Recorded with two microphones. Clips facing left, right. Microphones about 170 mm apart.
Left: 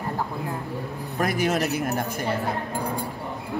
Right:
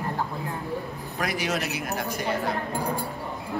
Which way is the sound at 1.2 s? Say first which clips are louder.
Left 5 dB; 50° left (ahead or behind).